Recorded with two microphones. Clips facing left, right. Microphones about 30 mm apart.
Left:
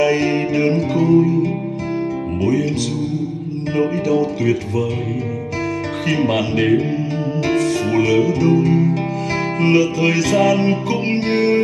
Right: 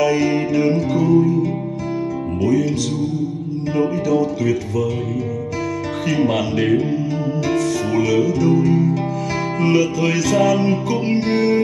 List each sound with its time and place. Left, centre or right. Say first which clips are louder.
0.0 s music: left 1 dB; left
3.7 s music: left 1 dB; left
6.0 s speech: even; centre
7.3 s music: left 3 dB; left
9.6 s speech: left 2 dB; left
10.4 s music: left 1 dB; left